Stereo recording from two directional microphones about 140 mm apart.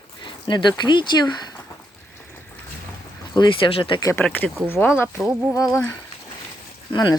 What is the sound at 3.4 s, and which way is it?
Speech, 35° left (ahead or behind).